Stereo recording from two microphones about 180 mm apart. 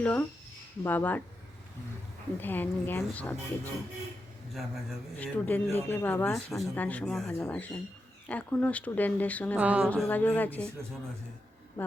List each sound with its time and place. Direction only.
0.0 s a woman's voice: 10° left (ahead or behind)
2.4 s a woman's voice: 10° left (ahead or behind)
6.3 s a woman's voice: centre (ahead or behind)
9.6 s speech: 5° right (ahead or behind)
9.9 s a woman's voice: 10° left (ahead or behind)